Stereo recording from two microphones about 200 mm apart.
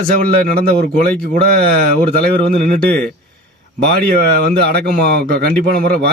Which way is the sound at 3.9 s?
50° right (ahead or behind).